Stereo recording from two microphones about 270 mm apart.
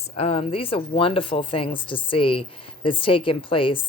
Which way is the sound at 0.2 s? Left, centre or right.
Left.